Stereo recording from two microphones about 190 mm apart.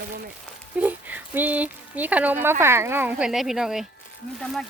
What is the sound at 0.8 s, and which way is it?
Speech, 10° right (ahead or behind).